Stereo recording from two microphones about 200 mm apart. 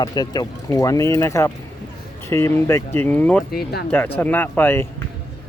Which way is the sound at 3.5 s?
55° left (ahead or behind).